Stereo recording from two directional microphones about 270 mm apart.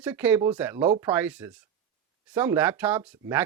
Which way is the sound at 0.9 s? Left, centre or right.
Right.